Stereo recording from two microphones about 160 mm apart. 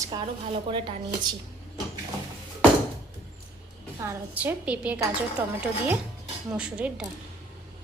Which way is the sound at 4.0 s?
15° right (ahead or behind).